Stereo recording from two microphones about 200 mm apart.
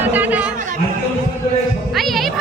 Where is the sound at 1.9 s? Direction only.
Centre (ahead or behind).